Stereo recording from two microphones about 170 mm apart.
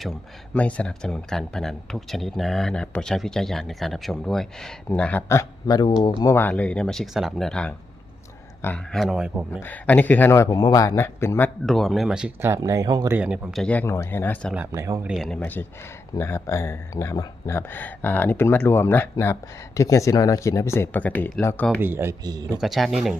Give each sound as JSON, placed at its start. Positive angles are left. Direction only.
{"t": 0.5, "sound": "speech", "side_deg": 5}
{"t": 9.6, "sound": "speech", "side_deg": 10}
{"t": 13.1, "sound": "speech", "side_deg": -10}
{"t": 13.6, "sound": "speech", "side_deg": 10}
{"t": 14.7, "sound": "speech", "side_deg": -15}
{"t": 15.1, "sound": "speech", "side_deg": 0}
{"t": 21.8, "sound": "speech", "side_deg": -15}
{"t": 22.6, "sound": "speech", "side_deg": 0}